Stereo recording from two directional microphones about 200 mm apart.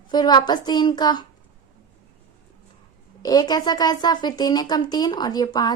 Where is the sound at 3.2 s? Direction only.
20° left (ahead or behind).